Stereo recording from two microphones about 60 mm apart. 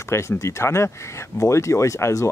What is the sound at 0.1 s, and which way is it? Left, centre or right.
Speech, left.